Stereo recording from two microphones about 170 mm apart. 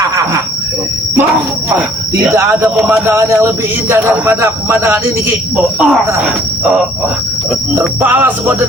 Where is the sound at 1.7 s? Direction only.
10° right (ahead or behind).